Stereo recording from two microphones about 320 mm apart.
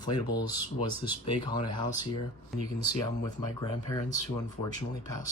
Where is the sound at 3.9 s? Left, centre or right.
Centre.